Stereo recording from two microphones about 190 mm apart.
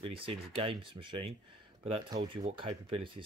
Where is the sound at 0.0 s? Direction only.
30° right (ahead or behind).